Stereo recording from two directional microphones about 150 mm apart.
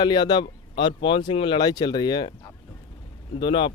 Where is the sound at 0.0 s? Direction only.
30° left (ahead or behind).